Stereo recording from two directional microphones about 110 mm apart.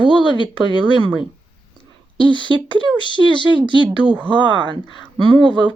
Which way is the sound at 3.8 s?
15° right (ahead or behind).